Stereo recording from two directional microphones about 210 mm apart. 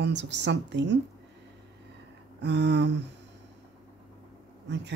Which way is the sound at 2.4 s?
55° right (ahead or behind).